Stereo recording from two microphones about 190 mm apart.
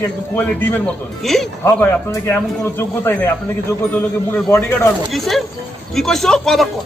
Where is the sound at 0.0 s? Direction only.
10° left (ahead or behind).